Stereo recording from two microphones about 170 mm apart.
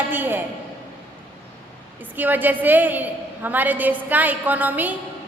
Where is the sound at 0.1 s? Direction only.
10° right (ahead or behind).